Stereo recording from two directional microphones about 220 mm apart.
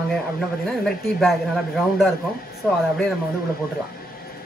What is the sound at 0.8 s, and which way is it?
Speech, centre (ahead or behind).